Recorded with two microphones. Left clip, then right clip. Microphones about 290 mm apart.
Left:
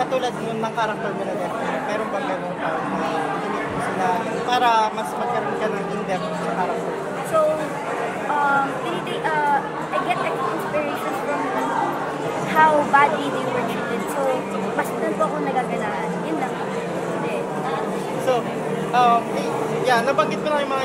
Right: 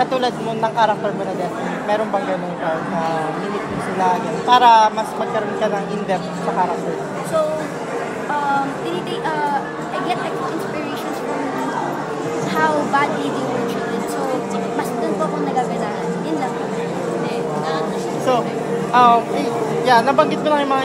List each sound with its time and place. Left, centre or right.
0.0 s vehicle: right
4.5 s speech: right
12.5 s a woman's voice: centre
18.9 s a sound: right